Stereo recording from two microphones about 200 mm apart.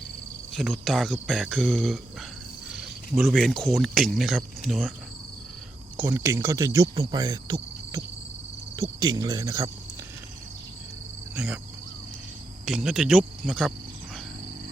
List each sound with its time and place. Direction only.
0.5 s speech: centre (ahead or behind)
6.0 s speech: 10° right (ahead or behind)
6.9 s cricket: 15° right (ahead or behind)
8.7 s speech: 15° right (ahead or behind)
11.3 s speech: 5° right (ahead or behind)
12.6 s speech: centre (ahead or behind)